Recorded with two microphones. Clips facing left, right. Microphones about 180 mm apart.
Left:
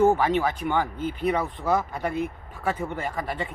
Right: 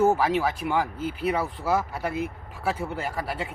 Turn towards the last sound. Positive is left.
turn(degrees=-5)  # may be behind; listen again after turning